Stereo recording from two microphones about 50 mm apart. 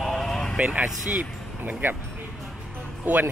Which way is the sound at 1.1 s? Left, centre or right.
Right.